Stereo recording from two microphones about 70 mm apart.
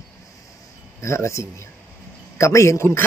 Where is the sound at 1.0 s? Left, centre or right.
Left.